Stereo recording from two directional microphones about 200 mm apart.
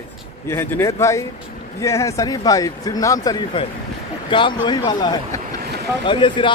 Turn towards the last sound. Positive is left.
turn(degrees=25)  # may be behind; listen again after turning